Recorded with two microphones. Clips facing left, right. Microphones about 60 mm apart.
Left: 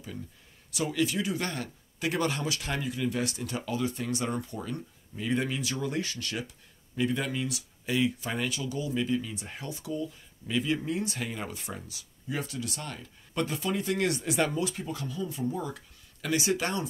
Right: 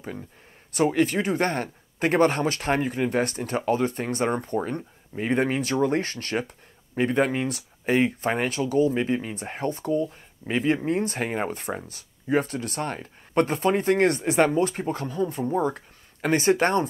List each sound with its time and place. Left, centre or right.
0.7 s speech: right